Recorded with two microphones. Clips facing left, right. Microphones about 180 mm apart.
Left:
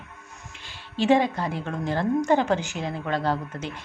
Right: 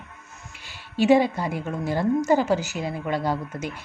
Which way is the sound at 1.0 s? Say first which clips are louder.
Right 2 dB; 10° right (ahead or behind).